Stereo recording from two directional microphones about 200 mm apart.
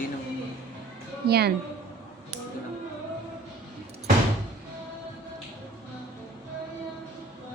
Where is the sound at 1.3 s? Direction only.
55° right (ahead or behind).